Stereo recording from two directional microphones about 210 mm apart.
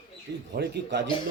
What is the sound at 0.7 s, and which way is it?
Speech, 55° right (ahead or behind).